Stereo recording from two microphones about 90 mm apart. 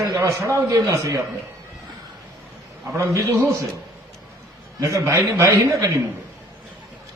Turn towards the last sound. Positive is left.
turn(degrees=-35)  # may be behind; listen again after turning